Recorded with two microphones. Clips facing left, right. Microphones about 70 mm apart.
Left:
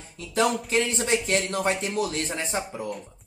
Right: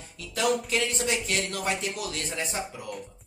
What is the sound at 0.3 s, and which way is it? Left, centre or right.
Speech, left.